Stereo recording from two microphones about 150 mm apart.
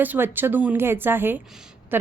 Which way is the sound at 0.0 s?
10° right (ahead or behind).